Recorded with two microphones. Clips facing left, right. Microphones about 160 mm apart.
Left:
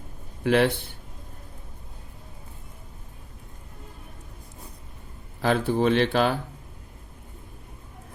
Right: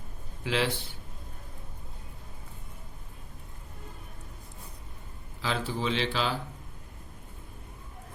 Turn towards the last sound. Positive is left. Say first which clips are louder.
# left 8 dB
turn(degrees=55)  # may be behind; listen again after turning